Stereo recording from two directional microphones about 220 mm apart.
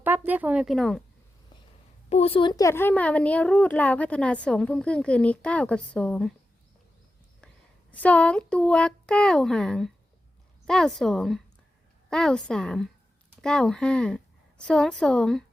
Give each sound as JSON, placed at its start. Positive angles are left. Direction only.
{"t": 0.0, "sound": "speech", "side_deg": -10}
{"t": 2.0, "sound": "a woman's voice", "side_deg": 30}
{"t": 7.4, "sound": "a woman's voice", "side_deg": 5}